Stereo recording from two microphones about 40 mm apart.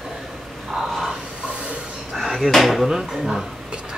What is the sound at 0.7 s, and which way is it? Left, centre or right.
Snort, centre.